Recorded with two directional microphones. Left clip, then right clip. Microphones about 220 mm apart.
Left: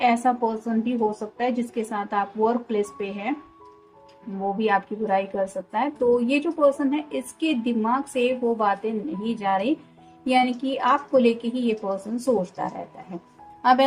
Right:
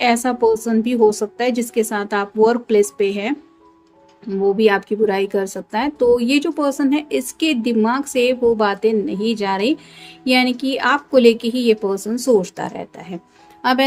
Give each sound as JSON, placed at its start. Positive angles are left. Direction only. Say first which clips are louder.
{"t": 0.0, "sound": "speech", "louder": "right 5 dB", "side_deg": -40}
{"t": 4.5, "sound": "a woman's voice", "louder": "right 5 dB", "side_deg": -45}